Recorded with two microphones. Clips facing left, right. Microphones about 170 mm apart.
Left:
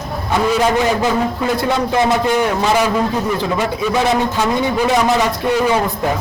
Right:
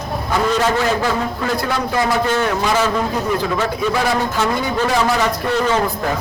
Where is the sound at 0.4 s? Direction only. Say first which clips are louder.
Left 3 dB; 10° left (ahead or behind).